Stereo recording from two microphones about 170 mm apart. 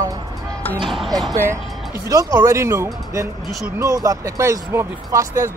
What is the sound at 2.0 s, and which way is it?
Speech, 20° right (ahead or behind).